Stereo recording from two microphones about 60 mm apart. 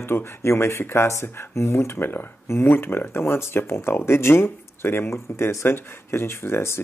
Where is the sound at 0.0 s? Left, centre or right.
Left.